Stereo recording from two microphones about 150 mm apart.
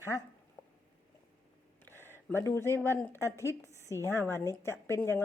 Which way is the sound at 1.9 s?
15° left (ahead or behind).